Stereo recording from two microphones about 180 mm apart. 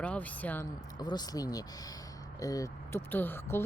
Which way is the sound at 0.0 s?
10° left (ahead or behind).